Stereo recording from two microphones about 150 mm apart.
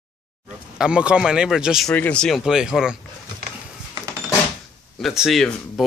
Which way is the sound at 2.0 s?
10° left (ahead or behind).